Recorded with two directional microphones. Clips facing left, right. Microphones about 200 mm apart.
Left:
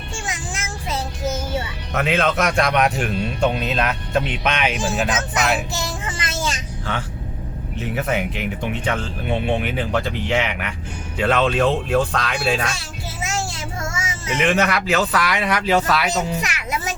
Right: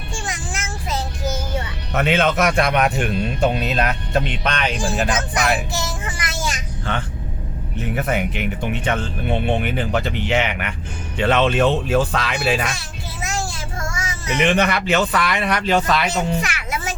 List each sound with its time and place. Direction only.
0.6 s child singing: 30° left (ahead or behind)
1.9 s speech: centre (ahead or behind)
5.7 s speech: 20° left (ahead or behind)
7.9 s speech: centre (ahead or behind)
13.8 s child singing: 25° left (ahead or behind)
14.3 s speech: centre (ahead or behind)